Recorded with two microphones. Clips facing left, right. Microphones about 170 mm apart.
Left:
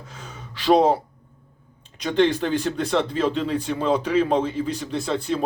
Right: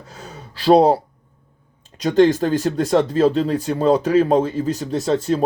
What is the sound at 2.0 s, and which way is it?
Speech, 40° right (ahead or behind).